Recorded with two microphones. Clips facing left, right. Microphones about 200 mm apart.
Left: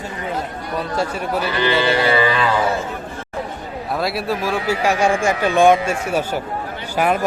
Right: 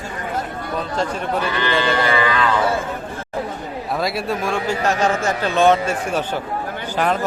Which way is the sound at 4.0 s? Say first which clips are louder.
Left 1 dB; centre (ahead or behind).